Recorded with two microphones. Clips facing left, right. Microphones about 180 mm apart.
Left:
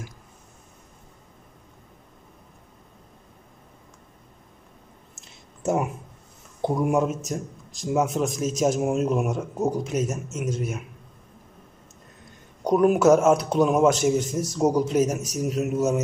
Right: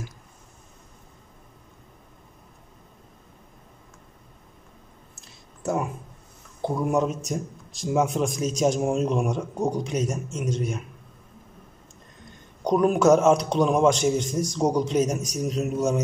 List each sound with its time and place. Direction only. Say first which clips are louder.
5.2 s a sound: left 3 dB; 25° left (ahead or behind)
6.6 s speech: left 1 dB; 10° left (ahead or behind)
12.6 s speech: left 1 dB; 5° left (ahead or behind)